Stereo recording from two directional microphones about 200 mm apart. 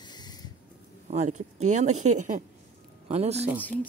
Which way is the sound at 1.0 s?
35° right (ahead or behind).